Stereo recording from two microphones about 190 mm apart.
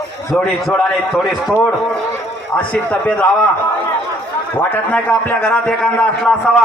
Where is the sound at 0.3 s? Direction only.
5° left (ahead or behind).